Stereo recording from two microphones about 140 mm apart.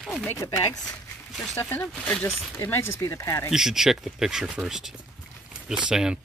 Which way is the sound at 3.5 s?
5° right (ahead or behind).